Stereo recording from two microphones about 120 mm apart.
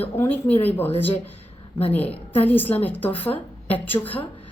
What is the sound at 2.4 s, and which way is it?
Speech, 15° left (ahead or behind).